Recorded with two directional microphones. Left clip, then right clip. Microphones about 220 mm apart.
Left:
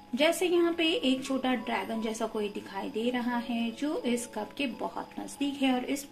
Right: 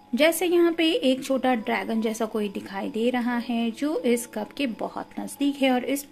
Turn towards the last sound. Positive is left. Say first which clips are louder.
# right 6 dB
turn(degrees=-50)  # may be behind; listen again after turning